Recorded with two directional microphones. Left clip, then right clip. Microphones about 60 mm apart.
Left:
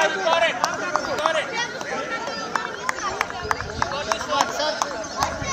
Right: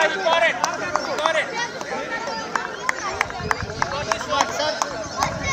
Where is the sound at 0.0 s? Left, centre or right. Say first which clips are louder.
Right 1 dB; right.